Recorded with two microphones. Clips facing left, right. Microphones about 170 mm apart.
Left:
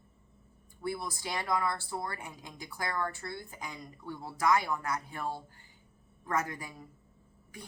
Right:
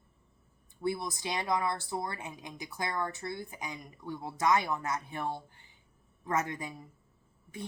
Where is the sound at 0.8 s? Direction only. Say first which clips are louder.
Right 3 dB; 20° right (ahead or behind).